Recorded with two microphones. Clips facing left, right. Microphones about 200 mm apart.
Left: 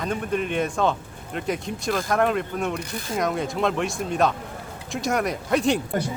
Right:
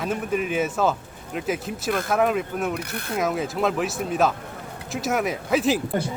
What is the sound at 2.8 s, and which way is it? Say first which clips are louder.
Speech: even; 60° right (ahead or behind).